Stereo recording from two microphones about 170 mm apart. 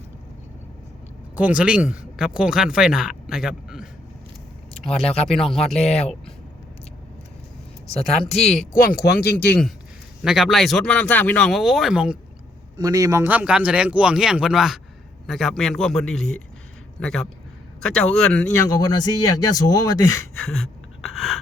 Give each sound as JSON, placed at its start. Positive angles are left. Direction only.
{"t": 1.4, "sound": "speech", "side_deg": -10}
{"t": 5.5, "sound": "speech", "side_deg": 40}
{"t": 7.9, "sound": "speech", "side_deg": 35}
{"t": 8.3, "sound": "speech", "side_deg": 0}
{"t": 8.7, "sound": "speech", "side_deg": 60}
{"t": 10.2, "sound": "speech", "side_deg": 0}
{"t": 12.7, "sound": "a man's voice", "side_deg": -20}
{"t": 18.5, "sound": "speech", "side_deg": 20}
{"t": 21.1, "sound": "a sound", "side_deg": 0}